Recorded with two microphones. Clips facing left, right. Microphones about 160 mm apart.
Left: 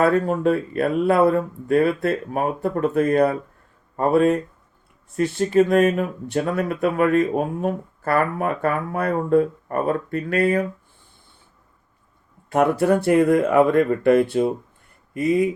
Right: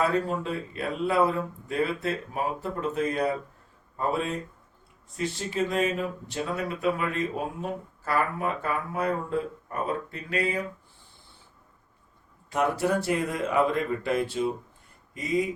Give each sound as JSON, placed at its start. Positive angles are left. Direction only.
{"t": 0.0, "sound": "speech", "side_deg": 55}
{"t": 12.5, "sound": "speech", "side_deg": 55}